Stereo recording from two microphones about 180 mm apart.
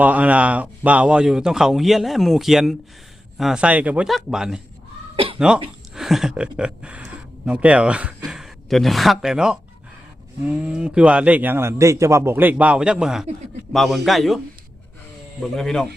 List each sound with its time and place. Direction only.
0.0 s speech: 10° right (ahead or behind)
5.1 s a sound: 30° right (ahead or behind)
5.9 s speech: centre (ahead or behind)
15.4 s speech: centre (ahead or behind)